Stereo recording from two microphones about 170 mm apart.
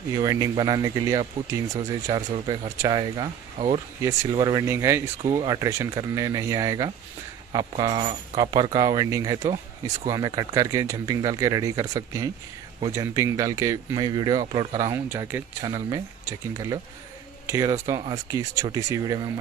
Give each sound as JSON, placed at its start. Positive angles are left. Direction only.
{"t": 0.2, "sound": "speech", "side_deg": -20}
{"t": 15.0, "sound": "speech", "side_deg": -15}